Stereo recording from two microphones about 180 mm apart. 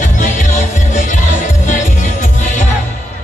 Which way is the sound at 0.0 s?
45° left (ahead or behind).